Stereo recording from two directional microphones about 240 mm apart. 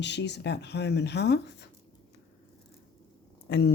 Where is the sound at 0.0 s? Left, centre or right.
Left.